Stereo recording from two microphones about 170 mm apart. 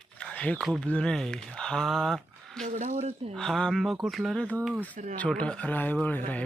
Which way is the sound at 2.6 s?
45° right (ahead or behind).